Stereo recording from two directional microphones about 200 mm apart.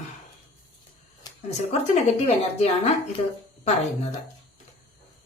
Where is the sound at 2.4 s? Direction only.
35° left (ahead or behind).